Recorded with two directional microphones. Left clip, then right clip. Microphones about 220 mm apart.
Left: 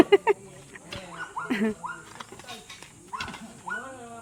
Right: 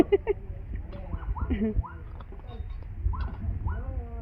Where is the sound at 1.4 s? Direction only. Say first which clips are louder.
Left 3 dB; 50° left (ahead or behind).